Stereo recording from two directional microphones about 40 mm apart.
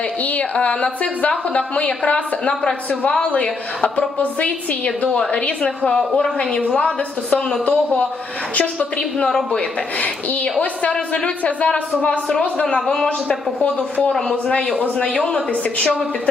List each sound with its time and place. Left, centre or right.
0.2 s a woman's voice: left
4.9 s a man's voice: centre
5.9 s a woman's voice: centre
8.5 s a woman's voice: left
9.0 s a woman's voice: centre
9.6 s a woman's voice: left
12.6 s a woman's voice: centre
14.1 s a woman's voice: centre
14.9 s a woman's voice: left